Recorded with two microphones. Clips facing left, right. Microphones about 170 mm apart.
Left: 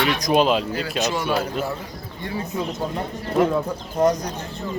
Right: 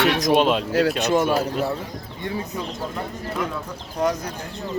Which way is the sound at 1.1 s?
40° right (ahead or behind).